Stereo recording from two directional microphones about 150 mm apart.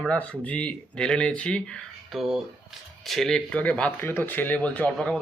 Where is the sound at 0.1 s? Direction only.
10° left (ahead or behind).